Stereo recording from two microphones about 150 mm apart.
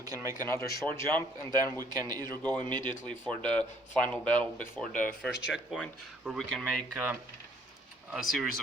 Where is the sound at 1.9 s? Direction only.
25° right (ahead or behind).